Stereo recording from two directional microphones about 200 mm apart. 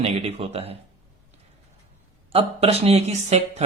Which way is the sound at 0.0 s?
30° right (ahead or behind).